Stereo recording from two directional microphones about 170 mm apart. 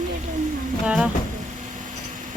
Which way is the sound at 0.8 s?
5° right (ahead or behind).